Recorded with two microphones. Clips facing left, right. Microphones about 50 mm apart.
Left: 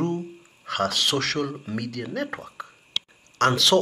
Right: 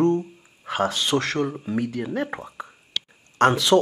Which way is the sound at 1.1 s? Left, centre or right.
Right.